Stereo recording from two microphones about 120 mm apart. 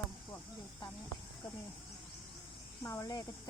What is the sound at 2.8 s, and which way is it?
Speech, 25° left (ahead or behind).